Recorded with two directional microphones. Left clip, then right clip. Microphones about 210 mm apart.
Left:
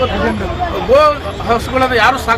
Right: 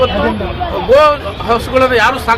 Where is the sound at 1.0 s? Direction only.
Centre (ahead or behind).